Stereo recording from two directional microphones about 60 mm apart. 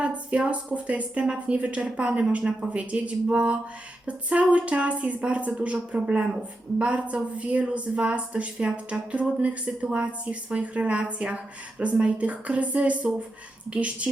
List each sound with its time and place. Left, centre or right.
0.0 s a woman's voice: right